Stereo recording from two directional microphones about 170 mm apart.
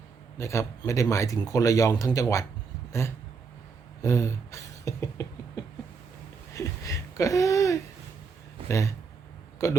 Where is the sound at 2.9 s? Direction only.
15° left (ahead or behind).